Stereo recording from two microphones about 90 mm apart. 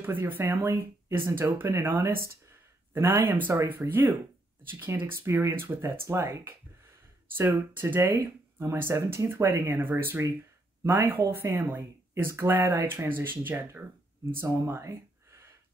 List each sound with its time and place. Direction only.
0.0 s speech: 25° right (ahead or behind)
8.1 s speech: 35° right (ahead or behind)